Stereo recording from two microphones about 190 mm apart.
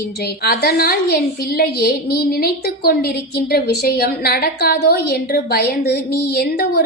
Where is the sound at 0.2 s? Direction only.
55° left (ahead or behind).